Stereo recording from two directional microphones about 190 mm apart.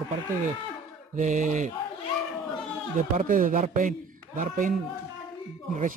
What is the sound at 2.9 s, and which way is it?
A man's voice, 45° right (ahead or behind).